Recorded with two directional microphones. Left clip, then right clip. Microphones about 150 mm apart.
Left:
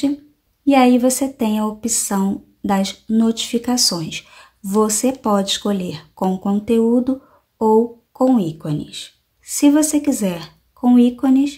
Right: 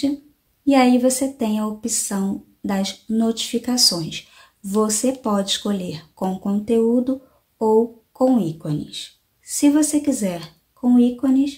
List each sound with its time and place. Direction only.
0.7 s speech: 20° left (ahead or behind)